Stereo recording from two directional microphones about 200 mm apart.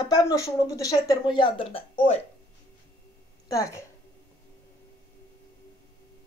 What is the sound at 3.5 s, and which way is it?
Speech, 15° left (ahead or behind).